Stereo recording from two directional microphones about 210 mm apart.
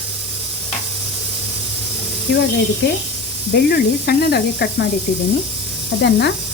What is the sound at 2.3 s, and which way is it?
Speech, 50° left (ahead or behind).